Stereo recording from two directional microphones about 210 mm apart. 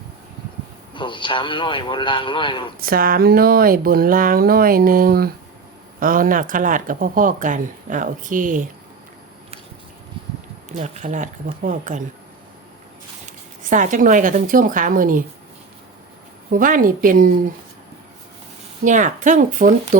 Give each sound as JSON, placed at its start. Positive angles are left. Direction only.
{"t": 0.9, "sound": "a man's voice", "side_deg": 25}
{"t": 2.8, "sound": "speech", "side_deg": -45}
{"t": 10.7, "sound": "speech", "side_deg": -35}
{"t": 13.7, "sound": "speech", "side_deg": -35}
{"t": 16.5, "sound": "speech", "side_deg": -40}
{"t": 18.9, "sound": "speech", "side_deg": -35}